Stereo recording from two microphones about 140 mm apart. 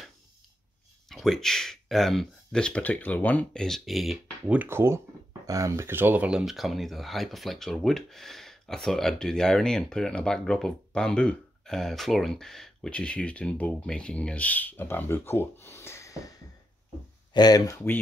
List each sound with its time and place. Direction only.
1.0 s speech: centre (ahead or behind)
4.6 s speech: 15° right (ahead or behind); by 16.2 s 20° left (ahead or behind)
17.3 s speech: 30° left (ahead or behind)